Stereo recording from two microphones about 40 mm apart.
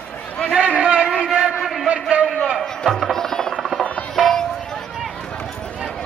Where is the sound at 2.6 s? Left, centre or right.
Centre.